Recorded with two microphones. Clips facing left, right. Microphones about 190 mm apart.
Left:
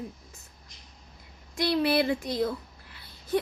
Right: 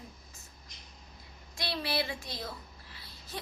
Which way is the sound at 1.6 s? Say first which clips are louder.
Left 10 dB; 55° left (ahead or behind).